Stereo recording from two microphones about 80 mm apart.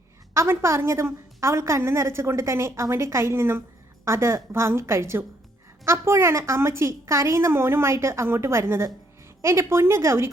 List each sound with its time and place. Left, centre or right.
0.3 s a woman's voice: right